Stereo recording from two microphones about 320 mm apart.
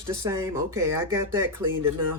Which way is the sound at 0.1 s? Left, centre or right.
Centre.